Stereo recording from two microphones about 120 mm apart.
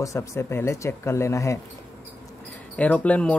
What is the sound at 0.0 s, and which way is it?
Speech, 25° left (ahead or behind).